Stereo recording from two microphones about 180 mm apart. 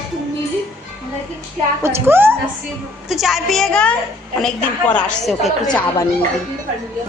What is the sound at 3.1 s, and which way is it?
A woman's voice, centre (ahead or behind).